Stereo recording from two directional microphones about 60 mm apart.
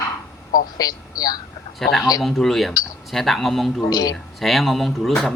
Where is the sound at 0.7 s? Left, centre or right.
Left.